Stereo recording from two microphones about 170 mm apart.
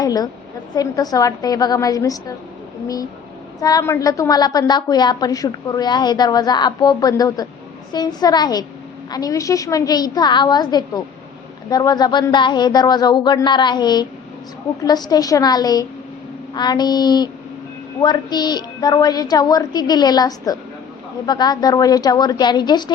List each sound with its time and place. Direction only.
0.0 s a woman's voice: 20° left (ahead or behind)